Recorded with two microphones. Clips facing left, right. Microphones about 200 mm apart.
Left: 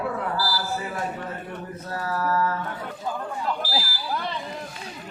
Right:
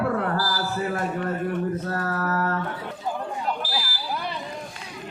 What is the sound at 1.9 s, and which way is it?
Speech, 60° right (ahead or behind).